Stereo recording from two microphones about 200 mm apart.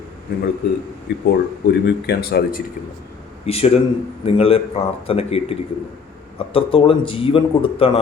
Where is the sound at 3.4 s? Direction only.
30° left (ahead or behind).